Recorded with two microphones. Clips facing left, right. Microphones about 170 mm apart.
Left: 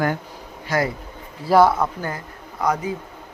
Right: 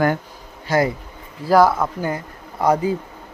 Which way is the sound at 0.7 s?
30° right (ahead or behind).